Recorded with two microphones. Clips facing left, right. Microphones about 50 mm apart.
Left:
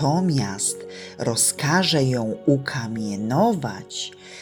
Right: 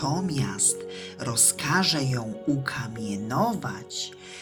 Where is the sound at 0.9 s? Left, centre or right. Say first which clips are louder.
Left 12 dB; left.